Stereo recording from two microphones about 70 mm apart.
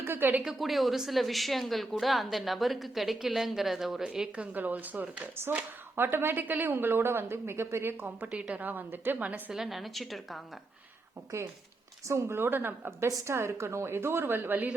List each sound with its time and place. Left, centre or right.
0.0 s a woman's voice: right
0.4 s a woman's voice: centre
4.5 s speech: right
9.5 s a woman's voice: centre
12.0 s speech: right
13.1 s speech: right